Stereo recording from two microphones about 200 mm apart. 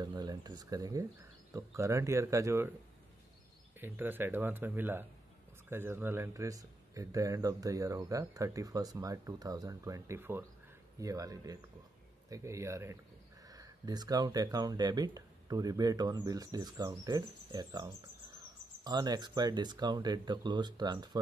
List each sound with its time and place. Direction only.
0.0 s speech: 20° right (ahead or behind)
3.8 s speech: 10° right (ahead or behind)